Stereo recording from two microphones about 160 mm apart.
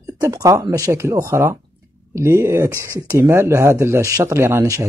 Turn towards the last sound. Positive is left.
turn(degrees=-15)  # may be behind; listen again after turning